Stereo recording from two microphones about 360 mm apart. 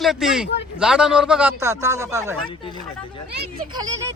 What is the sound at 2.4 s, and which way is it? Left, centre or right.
Speech, centre.